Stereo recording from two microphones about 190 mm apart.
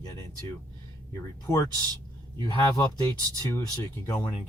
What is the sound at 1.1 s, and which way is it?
Speech, 15° left (ahead or behind).